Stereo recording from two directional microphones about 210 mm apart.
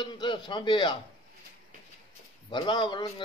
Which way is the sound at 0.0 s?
20° left (ahead or behind).